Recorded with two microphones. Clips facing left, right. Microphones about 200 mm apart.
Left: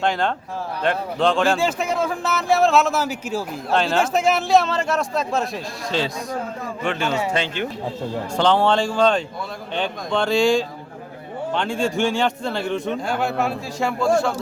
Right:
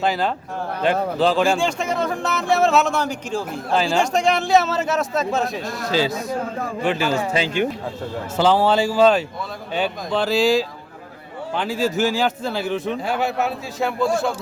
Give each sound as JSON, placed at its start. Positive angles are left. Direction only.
{"t": 0.0, "sound": "speech", "side_deg": -5}